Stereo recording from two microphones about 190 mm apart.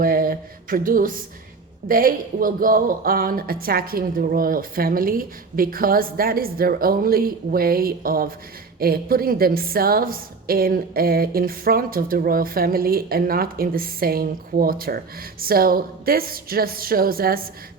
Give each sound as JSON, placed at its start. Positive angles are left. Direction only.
{"t": 0.0, "sound": "a woman's voice", "side_deg": -50}